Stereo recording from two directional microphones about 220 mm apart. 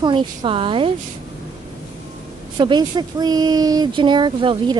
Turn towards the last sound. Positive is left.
turn(degrees=-20)  # may be behind; listen again after turning